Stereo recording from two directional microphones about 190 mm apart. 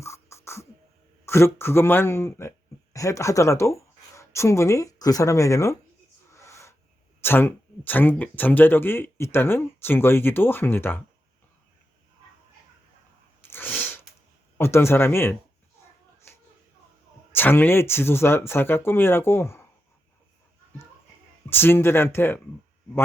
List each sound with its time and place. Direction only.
0.0 s beatboxing: 15° left (ahead or behind)
1.2 s speech: 15° left (ahead or behind)
6.3 s wheeze: 15° left (ahead or behind)
7.2 s speech: 10° left (ahead or behind)
13.4 s sneeze: 10° left (ahead or behind)
14.6 s speech: 15° left (ahead or behind)
17.3 s speech: 10° left (ahead or behind)
21.5 s speech: 10° left (ahead or behind)